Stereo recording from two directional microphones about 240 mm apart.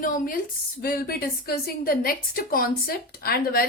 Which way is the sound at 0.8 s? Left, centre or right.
Left.